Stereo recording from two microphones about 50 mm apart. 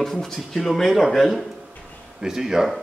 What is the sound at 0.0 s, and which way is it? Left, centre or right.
Speech, centre.